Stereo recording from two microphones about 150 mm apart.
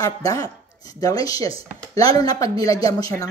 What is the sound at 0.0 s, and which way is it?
Speech, 20° left (ahead or behind).